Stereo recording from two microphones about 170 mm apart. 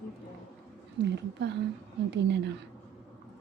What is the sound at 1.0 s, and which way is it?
A woman's voice, 90° right.